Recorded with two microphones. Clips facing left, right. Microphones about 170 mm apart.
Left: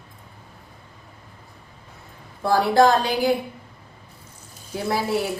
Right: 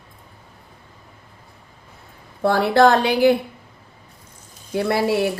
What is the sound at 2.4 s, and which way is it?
Speech, 65° right (ahead or behind).